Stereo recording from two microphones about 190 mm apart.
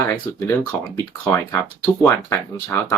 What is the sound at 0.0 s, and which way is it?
Speech, 15° left (ahead or behind).